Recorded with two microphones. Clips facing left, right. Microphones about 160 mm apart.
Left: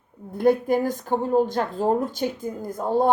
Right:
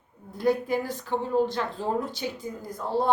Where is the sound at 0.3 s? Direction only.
50° left (ahead or behind).